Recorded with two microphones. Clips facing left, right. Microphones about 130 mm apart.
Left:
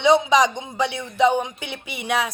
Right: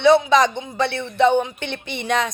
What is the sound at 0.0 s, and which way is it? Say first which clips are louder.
A man's voice: right 2 dB; 15° left (ahead or behind).